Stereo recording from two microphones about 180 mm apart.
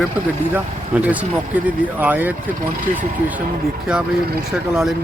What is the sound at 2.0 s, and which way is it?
Speech, 10° right (ahead or behind).